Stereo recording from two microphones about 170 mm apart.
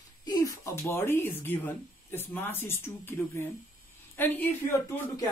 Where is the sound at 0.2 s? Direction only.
25° left (ahead or behind).